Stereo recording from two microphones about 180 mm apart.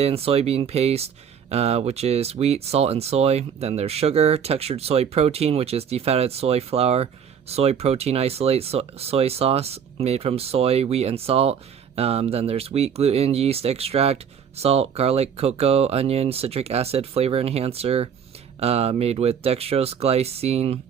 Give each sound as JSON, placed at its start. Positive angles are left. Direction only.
{"t": 0.0, "sound": "speech", "side_deg": -35}